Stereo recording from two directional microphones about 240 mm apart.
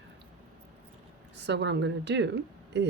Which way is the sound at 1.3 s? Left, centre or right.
Right.